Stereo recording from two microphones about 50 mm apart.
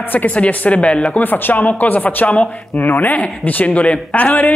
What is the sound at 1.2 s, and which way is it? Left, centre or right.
A man's voice, left.